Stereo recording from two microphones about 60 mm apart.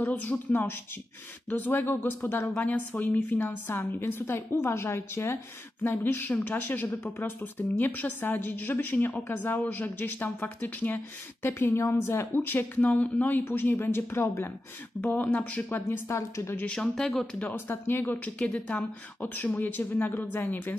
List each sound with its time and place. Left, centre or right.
0.1 s a woman's voice: left
2.5 s a woman's voice: left
5.9 s a woman's voice: left
13.9 s speech: left
15.0 s a woman's voice: left
16.1 s a woman's voice: left
16.7 s speech: centre
17.6 s a woman's voice: left